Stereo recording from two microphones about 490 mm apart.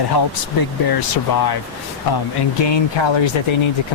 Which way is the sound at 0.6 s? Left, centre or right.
Left.